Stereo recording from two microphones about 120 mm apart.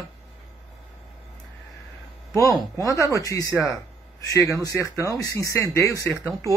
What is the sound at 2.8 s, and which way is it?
Speech, 25° left (ahead or behind).